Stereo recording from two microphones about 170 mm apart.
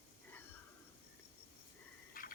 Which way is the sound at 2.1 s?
55° left (ahead or behind).